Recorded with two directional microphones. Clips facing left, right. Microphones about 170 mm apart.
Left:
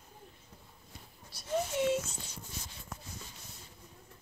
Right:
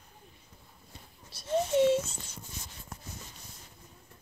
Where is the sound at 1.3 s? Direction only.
25° right (ahead or behind).